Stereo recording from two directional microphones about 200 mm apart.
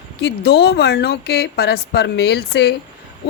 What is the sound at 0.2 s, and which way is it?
Speech, 55° left (ahead or behind).